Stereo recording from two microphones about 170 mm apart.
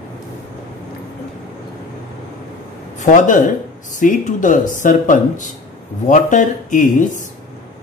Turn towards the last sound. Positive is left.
turn(degrees=50)  # may be behind; listen again after turning